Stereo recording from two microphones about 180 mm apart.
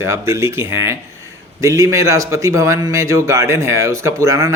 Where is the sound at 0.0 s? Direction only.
15° right (ahead or behind).